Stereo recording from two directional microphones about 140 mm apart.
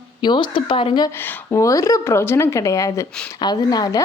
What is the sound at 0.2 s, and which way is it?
Speech, 35° left (ahead or behind).